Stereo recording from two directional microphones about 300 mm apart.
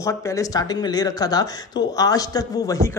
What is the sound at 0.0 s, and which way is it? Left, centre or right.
Speech, centre.